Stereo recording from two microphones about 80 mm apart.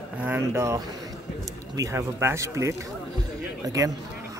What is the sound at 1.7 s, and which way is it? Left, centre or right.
Speech, right.